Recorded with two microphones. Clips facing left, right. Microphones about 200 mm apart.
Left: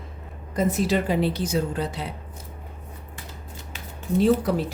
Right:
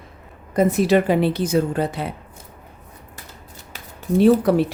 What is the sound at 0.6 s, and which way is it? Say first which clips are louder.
Speech: right 6 dB; 65° right (ahead or behind).